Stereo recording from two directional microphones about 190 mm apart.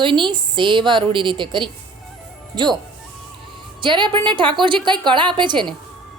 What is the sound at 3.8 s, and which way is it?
A woman's voice, 25° right (ahead or behind).